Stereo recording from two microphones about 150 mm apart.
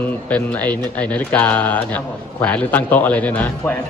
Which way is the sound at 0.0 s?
10° left (ahead or behind).